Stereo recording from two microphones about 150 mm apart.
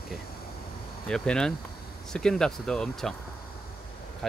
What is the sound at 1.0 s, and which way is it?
Speech, 5° left (ahead or behind).